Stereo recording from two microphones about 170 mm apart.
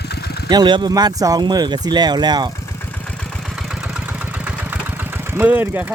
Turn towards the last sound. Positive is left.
turn(degrees=-10)  # may be behind; listen again after turning